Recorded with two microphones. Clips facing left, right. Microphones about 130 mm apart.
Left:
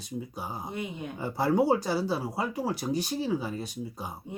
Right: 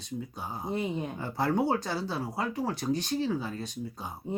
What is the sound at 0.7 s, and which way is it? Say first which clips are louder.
Speech: right 8 dB; 35° right (ahead or behind).